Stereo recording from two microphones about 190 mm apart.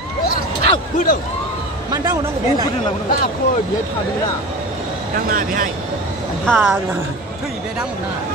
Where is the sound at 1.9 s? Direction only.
15° right (ahead or behind).